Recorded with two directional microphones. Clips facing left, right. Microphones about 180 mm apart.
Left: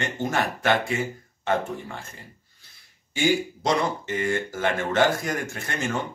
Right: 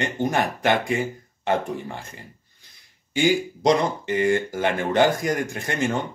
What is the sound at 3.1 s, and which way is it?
Speech, 15° right (ahead or behind).